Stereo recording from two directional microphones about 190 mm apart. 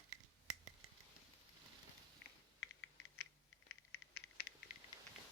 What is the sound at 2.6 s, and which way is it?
Typing, 80° left.